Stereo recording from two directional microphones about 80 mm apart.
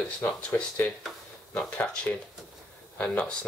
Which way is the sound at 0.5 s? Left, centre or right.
Left.